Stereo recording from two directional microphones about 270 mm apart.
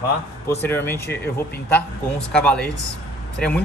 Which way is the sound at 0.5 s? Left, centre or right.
Centre.